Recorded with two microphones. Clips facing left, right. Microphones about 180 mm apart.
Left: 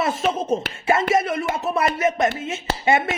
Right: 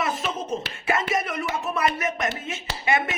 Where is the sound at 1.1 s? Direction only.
25° left (ahead or behind).